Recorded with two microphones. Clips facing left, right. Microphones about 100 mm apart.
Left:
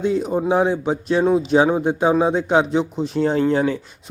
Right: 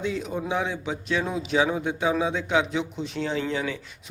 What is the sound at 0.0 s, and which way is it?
A man's voice, 40° left (ahead or behind).